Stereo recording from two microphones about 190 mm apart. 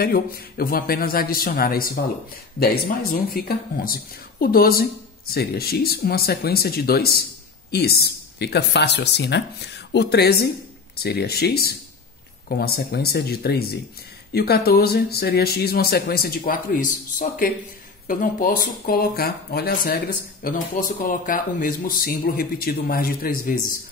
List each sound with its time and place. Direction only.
0.0 s speech: 55° left (ahead or behind)